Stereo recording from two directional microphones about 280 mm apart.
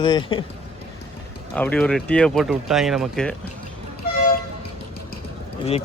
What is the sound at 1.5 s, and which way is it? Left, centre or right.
Speech, centre.